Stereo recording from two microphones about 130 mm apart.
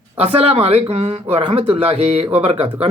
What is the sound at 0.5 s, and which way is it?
Speech, 55° right (ahead or behind).